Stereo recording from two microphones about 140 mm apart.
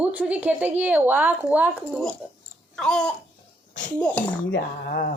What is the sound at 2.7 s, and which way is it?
Babbling, 5° left (ahead or behind).